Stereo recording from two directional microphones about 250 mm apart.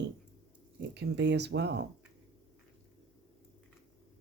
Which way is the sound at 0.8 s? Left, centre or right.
Right.